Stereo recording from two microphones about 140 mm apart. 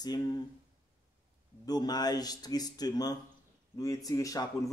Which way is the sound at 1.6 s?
30° left (ahead or behind).